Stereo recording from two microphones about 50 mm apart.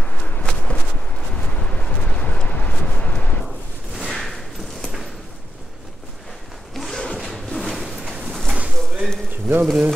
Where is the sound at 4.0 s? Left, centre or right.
Centre.